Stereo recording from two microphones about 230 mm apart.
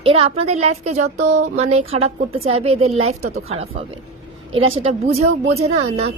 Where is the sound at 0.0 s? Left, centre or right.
Right.